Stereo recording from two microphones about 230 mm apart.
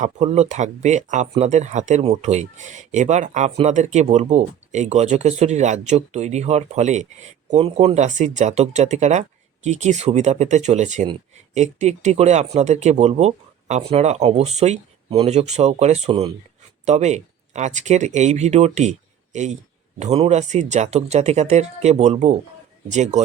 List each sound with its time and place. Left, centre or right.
0.0 s speech: right